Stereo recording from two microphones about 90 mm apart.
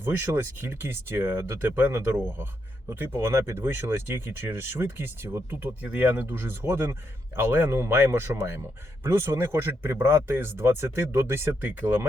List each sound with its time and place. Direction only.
0.6 s speech: 25° right (ahead or behind)